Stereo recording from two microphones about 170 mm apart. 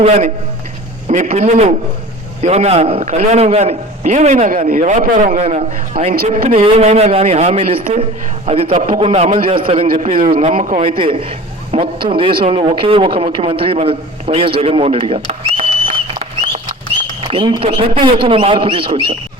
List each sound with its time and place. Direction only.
0.0 s a man's voice: 40° right (ahead or behind)
6.2 s a man's voice: 35° right (ahead or behind)